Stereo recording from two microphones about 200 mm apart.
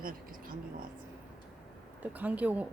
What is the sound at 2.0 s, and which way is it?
Speech, 10° right (ahead or behind).